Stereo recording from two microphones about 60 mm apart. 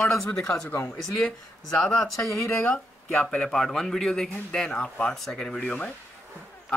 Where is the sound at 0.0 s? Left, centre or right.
Centre.